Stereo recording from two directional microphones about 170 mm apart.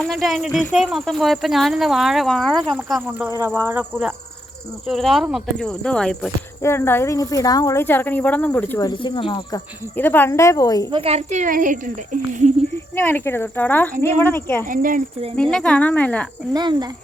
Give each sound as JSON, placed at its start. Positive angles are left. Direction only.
{"t": 0.0, "sound": "speech", "side_deg": 0}
{"t": 4.9, "sound": "speech", "side_deg": 0}
{"t": 6.6, "sound": "a woman's voice", "side_deg": 15}
{"t": 8.8, "sound": "speech", "side_deg": 25}
{"t": 9.9, "sound": "a woman's voice", "side_deg": 10}
{"t": 10.9, "sound": "speech", "side_deg": -35}
{"t": 13.0, "sound": "a woman's voice", "side_deg": 15}
{"t": 14.7, "sound": "speech", "side_deg": -55}
{"t": 15.4, "sound": "a woman's voice", "side_deg": 5}
{"t": 16.5, "sound": "cricket", "side_deg": -25}